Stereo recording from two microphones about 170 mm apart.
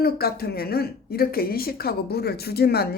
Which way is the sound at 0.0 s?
65° left (ahead or behind).